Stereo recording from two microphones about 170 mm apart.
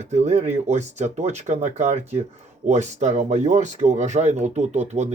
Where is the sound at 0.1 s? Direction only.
40° right (ahead or behind).